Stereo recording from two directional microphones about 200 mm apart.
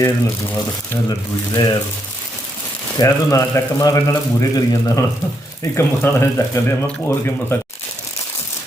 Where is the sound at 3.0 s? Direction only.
15° left (ahead or behind).